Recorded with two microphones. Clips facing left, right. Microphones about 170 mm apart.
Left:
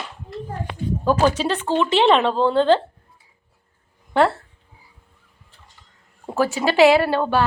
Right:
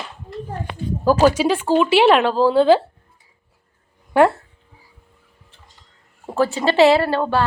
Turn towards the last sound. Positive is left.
turn(degrees=0)  # may be behind; listen again after turning